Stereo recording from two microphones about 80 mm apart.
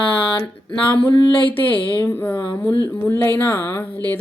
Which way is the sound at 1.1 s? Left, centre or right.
Left.